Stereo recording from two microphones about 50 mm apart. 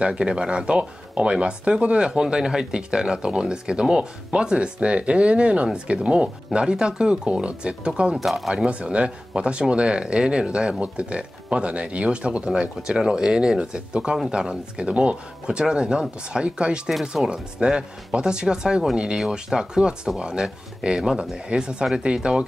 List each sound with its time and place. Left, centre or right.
0.0 s speech: right
8.2 s speech: centre
8.5 s speech: right